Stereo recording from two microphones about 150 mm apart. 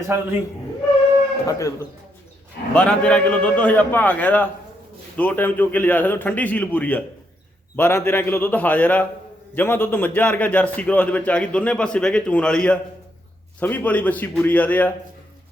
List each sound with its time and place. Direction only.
0.1 s a man's voice: 15° right (ahead or behind)
1.5 s speech: 20° left (ahead or behind)
2.7 s a man's voice: 5° left (ahead or behind)